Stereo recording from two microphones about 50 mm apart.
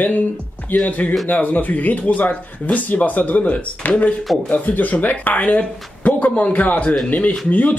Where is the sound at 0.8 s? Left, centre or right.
Left.